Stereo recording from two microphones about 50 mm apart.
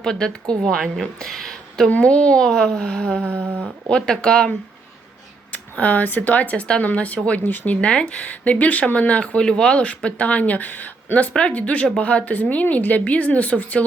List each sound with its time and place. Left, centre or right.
0.0 s speech: centre
1.9 s speech: left
2.5 s speech: centre
3.2 s a sound: right
3.8 s speech: centre
5.5 s speech: left
7.8 s speech: centre